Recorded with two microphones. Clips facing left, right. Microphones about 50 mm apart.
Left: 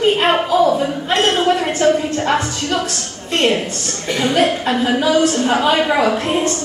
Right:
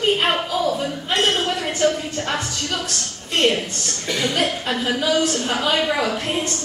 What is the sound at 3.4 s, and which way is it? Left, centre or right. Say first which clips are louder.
A woman's voice: left 3 dB; left.